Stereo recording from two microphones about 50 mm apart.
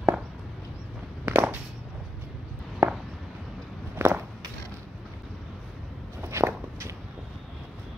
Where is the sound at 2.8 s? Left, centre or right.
Right.